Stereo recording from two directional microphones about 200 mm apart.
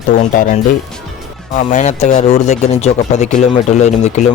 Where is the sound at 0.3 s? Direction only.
40° left (ahead or behind).